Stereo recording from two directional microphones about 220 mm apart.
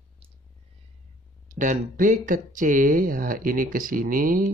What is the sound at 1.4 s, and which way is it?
Speech, 35° right (ahead or behind).